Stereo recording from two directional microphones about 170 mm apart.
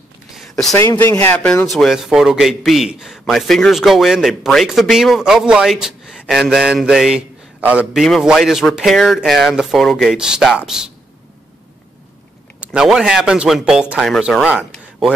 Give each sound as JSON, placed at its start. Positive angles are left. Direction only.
{"t": 0.4, "sound": "a sound", "side_deg": 0}
{"t": 0.7, "sound": "a man's voice", "side_deg": 15}
{"t": 12.5, "sound": "a man's voice", "side_deg": -5}